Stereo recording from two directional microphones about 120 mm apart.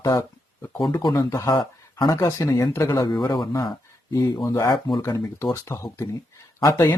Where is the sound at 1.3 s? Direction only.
25° left (ahead or behind).